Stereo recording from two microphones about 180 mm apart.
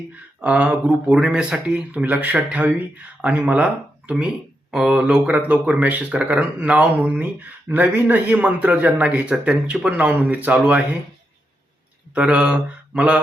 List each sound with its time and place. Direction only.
0.4 s speech: 10° right (ahead or behind)
12.1 s speech: 5° right (ahead or behind)